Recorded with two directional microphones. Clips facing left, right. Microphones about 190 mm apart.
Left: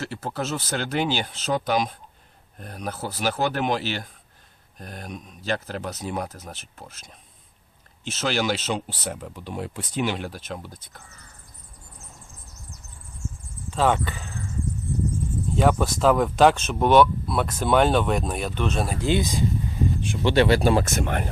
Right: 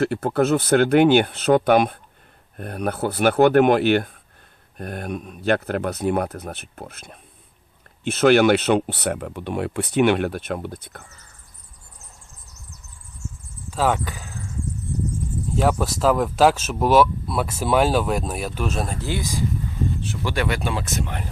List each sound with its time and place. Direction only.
0.0 s speech: 55° right (ahead or behind)
13.7 s speech: 5° right (ahead or behind)
15.5 s speech: centre (ahead or behind)
18.9 s speech: 15° left (ahead or behind); by 21.2 s 55° left (ahead or behind)